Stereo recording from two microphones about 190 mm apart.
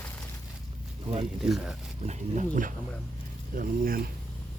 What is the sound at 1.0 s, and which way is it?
Speech, 30° right (ahead or behind).